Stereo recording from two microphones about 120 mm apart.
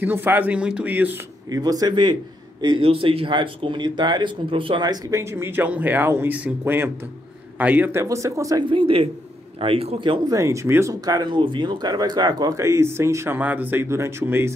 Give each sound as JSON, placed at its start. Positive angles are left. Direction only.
{"t": 0.0, "sound": "speech", "side_deg": -15}
{"t": 1.5, "sound": "speech", "side_deg": -35}
{"t": 8.6, "sound": "a man's voice", "side_deg": -45}
{"t": 10.3, "sound": "speech", "side_deg": -25}